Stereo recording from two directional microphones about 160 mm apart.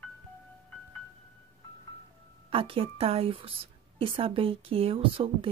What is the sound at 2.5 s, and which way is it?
A woman's voice, 35° right (ahead or behind).